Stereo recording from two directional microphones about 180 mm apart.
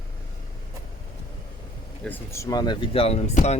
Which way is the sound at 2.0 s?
10° left (ahead or behind).